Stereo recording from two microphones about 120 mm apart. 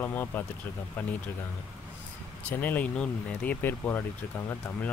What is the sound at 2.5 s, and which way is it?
Speech, 15° left (ahead or behind).